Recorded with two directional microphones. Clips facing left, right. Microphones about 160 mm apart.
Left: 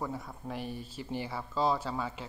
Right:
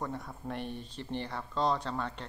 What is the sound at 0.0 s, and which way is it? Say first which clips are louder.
Speech: even; centre (ahead or behind).